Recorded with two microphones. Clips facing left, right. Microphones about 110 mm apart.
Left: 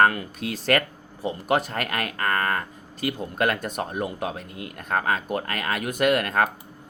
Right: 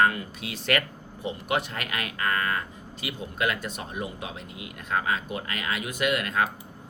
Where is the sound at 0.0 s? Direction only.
55° left (ahead or behind).